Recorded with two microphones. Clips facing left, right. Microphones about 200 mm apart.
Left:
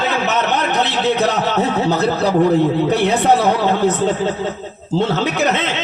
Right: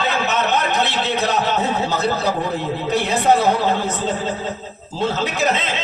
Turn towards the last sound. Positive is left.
turn(degrees=65)  # may be behind; listen again after turning